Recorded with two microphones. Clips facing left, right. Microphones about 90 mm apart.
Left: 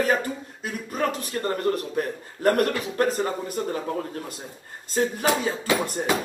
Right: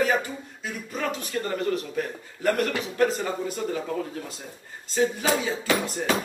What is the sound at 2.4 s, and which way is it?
Speech, 50° left (ahead or behind).